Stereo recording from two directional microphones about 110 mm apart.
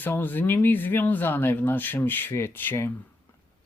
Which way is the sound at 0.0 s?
15° left (ahead or behind).